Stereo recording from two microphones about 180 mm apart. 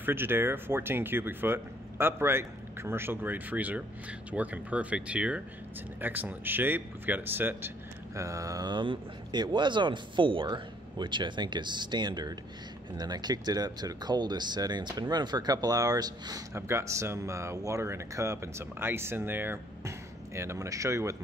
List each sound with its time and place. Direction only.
0.0 s speech: 10° right (ahead or behind)